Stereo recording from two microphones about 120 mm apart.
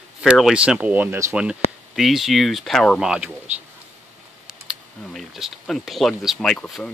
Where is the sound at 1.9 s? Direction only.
Centre (ahead or behind).